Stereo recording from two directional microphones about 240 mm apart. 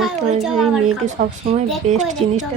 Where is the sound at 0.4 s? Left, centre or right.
Centre.